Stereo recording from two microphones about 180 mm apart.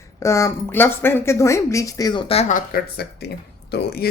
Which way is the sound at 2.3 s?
40° left (ahead or behind).